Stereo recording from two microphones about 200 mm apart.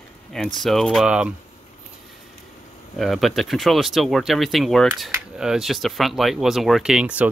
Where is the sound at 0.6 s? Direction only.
Centre (ahead or behind).